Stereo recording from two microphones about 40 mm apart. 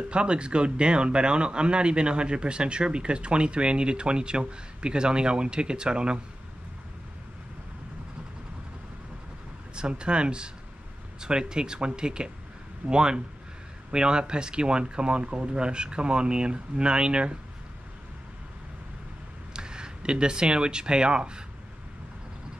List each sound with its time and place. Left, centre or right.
0.1 s speech: right
9.8 s speech: right
19.5 s speech: right